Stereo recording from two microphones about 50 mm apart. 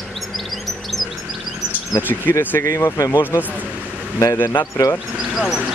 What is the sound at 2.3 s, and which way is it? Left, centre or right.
Speech, left.